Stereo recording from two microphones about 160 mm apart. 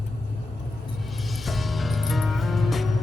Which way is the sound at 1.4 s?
Centre (ahead or behind).